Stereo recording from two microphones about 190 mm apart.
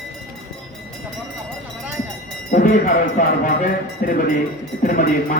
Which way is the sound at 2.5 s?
45° left (ahead or behind).